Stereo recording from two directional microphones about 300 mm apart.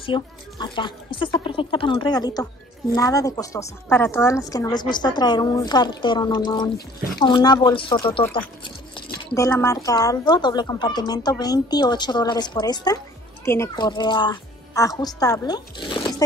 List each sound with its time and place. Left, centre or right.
0.0 s a woman's voice: centre